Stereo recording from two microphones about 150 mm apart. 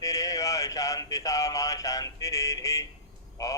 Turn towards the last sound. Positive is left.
turn(degrees=25)  # may be behind; listen again after turning